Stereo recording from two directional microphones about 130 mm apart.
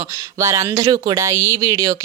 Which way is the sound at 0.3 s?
25° right (ahead or behind).